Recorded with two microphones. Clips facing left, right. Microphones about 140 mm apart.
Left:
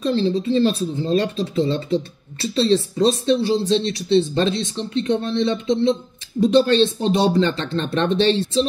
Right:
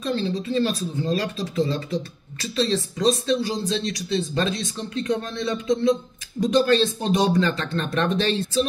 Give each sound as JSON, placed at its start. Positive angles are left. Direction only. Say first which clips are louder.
{"t": 0.0, "sound": "speech", "louder": "left 6 dB", "side_deg": 30}